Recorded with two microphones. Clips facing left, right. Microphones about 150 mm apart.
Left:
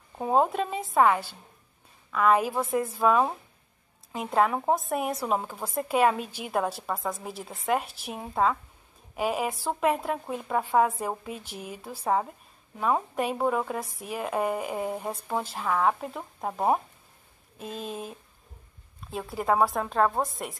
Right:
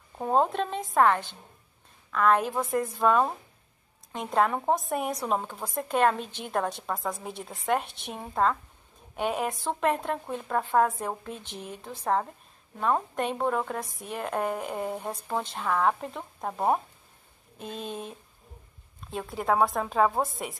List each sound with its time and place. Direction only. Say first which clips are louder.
0.2 s speech: left 1 dB; 5° left (ahead or behind)